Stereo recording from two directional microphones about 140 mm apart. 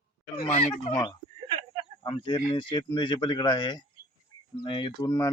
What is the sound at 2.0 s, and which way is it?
Speech, 35° left (ahead or behind).